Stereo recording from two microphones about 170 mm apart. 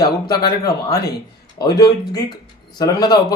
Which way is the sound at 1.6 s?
25° left (ahead or behind).